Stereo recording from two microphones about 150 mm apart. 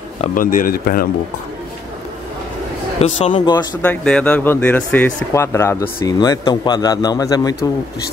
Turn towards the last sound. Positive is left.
turn(degrees=25)  # may be behind; listen again after turning